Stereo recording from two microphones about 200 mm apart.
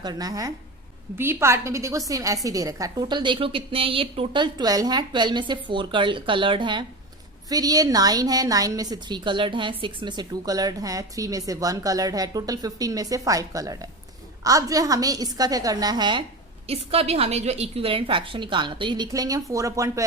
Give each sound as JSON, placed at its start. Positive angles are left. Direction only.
{"t": 0.0, "sound": "a woman's voice", "side_deg": -20}